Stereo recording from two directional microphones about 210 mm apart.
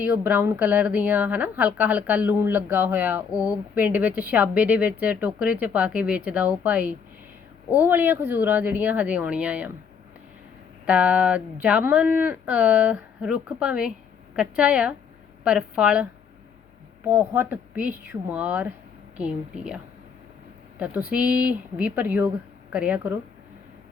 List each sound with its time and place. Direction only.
0.0 s speech: 10° right (ahead or behind)
3.3 s speech: 15° left (ahead or behind)
3.8 s speech: 10° right (ahead or behind)
10.8 s speech: 5° right (ahead or behind)
17.1 s speech: 10° right (ahead or behind)